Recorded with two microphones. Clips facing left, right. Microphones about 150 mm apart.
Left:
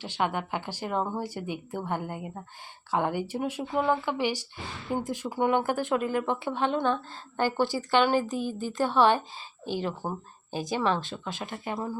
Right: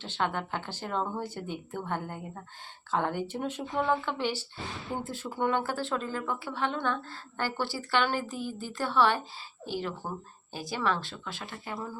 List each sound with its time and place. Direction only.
0.0 s speech: 10° left (ahead or behind)